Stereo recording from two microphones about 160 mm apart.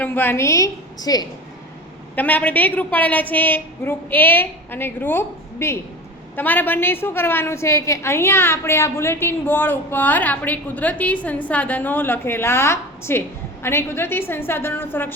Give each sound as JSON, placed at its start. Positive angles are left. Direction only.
{"t": 0.0, "sound": "a woman's voice", "side_deg": 10}
{"t": 2.1, "sound": "a woman's voice", "side_deg": 10}